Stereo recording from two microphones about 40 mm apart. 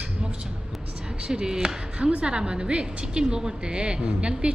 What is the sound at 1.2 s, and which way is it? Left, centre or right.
A woman's voice, centre.